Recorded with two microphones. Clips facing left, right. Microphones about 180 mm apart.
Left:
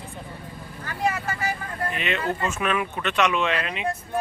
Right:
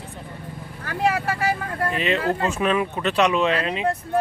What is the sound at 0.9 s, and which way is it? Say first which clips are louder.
Speech: right 4 dB; 70° right (ahead or behind).